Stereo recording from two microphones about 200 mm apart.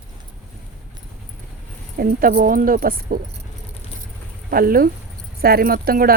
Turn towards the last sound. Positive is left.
turn(degrees=-45)  # may be behind; listen again after turning